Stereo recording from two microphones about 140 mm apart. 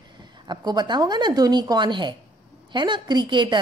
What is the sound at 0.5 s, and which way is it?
A woman's voice, 30° right (ahead or behind).